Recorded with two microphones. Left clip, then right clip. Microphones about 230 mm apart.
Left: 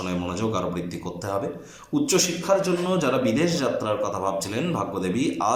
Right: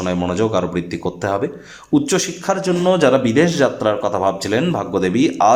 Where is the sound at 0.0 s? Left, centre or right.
Right.